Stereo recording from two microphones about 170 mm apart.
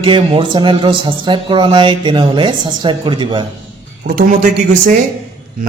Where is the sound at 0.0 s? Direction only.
30° right (ahead or behind).